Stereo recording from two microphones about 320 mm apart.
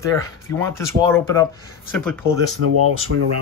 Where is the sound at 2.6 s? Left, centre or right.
Right.